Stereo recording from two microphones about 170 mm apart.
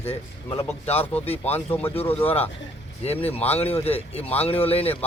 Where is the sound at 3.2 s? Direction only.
35° left (ahead or behind).